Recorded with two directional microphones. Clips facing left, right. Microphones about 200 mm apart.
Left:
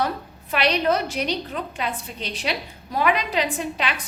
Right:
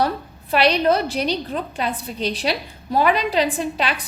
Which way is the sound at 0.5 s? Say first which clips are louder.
Right 4 dB; 35° right (ahead or behind).